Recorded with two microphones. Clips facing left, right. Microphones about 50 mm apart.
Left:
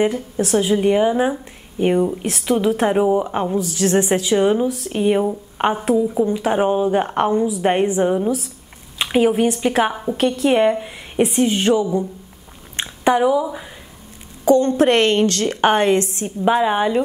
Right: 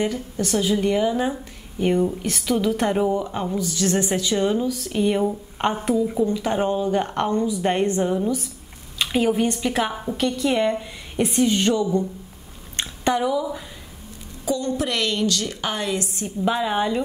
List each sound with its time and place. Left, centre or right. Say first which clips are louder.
0.0 s a woman's voice: left 5 dB; left
3.2 s a woman's voice: left 5 dB; left
10.1 s speech: left 5 dB; left
10.6 s a woman's voice: left 5 dB; left
12.7 s a sound: left 5 dB; left
14.4 s a woman's voice: left 10 dB; left
16.5 s a woman's voice: left 6 dB; left